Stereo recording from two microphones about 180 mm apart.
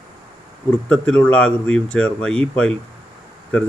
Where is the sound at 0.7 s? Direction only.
5° left (ahead or behind).